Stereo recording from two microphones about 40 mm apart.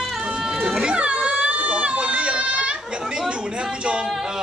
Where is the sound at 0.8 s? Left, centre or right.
Right.